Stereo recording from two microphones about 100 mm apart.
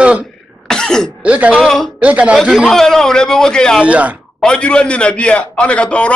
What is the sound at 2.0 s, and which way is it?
Speech, 10° right (ahead or behind).